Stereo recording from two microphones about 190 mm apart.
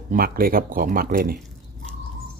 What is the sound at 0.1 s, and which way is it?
Speech, 50° right (ahead or behind).